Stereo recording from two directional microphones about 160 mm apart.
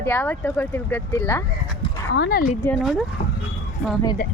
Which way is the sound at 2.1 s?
80° left.